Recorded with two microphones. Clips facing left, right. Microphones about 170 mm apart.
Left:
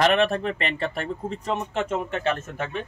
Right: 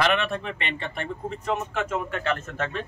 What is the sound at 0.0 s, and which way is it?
A man's voice, 40° left (ahead or behind).